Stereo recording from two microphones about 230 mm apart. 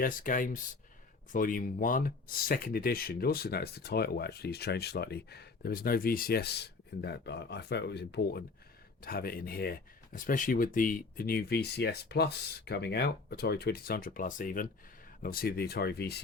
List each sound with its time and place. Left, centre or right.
0.0 s speech: left